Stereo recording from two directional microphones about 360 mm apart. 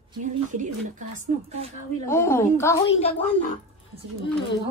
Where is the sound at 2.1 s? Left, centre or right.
Centre.